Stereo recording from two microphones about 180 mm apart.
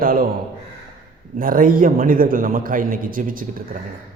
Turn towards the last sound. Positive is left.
turn(degrees=-50)  # may be behind; listen again after turning